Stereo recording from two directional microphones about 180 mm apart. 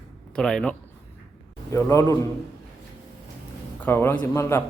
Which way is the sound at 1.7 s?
15° left (ahead or behind).